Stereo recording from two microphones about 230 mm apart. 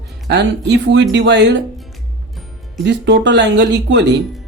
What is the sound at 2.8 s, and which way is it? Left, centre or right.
Speech, right.